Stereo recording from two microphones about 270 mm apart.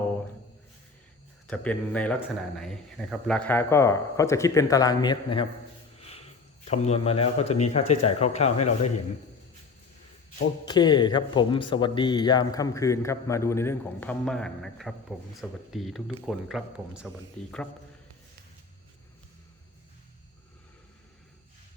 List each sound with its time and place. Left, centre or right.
1.5 s a man's voice: centre
6.0 s cricket: left
6.7 s speech: left
10.7 s a man's voice: centre